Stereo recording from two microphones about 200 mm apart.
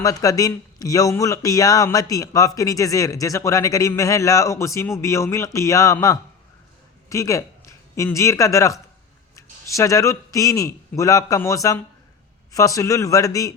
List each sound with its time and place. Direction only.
0.0 s a man's voice: 15° left (ahead or behind)